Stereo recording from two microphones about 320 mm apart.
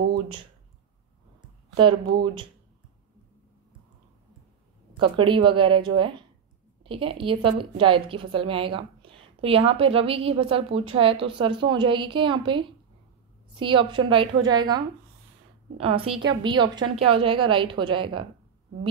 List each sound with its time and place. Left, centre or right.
0.1 s a sound: centre
1.8 s a woman's voice: centre
4.9 s a woman's voice: centre
15.8 s a woman's voice: centre